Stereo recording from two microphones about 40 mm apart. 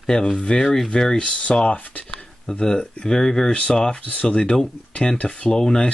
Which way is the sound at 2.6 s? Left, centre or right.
Centre.